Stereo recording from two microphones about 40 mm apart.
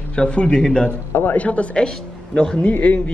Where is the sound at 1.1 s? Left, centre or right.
Left.